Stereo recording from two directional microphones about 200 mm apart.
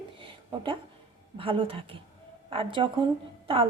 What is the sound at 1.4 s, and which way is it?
A woman's voice, 25° right (ahead or behind).